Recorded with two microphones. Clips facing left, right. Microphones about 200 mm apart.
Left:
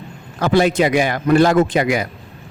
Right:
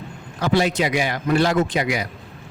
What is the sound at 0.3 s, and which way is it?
Speech, 50° left (ahead or behind).